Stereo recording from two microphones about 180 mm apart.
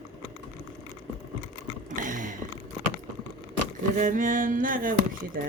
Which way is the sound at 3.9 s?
45° right (ahead or behind).